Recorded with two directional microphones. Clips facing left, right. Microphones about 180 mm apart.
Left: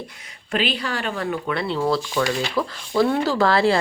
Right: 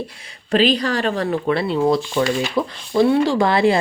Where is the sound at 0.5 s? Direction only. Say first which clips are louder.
Right 7 dB; 40° right (ahead or behind).